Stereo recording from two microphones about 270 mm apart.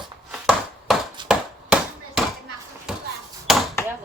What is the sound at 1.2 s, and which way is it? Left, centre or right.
Chop, centre.